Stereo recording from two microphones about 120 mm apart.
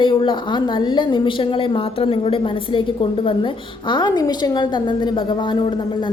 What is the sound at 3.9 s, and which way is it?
A woman's voice, 35° left (ahead or behind).